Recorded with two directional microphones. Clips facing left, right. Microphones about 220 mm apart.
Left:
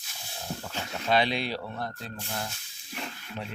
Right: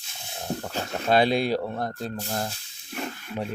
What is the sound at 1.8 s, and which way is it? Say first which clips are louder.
Snake: right 6 dB; 45° right (ahead or behind).